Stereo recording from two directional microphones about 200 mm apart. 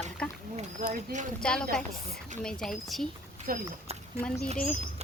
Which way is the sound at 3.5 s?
45° right (ahead or behind).